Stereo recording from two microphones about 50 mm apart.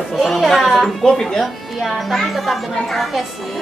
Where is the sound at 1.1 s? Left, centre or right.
Centre.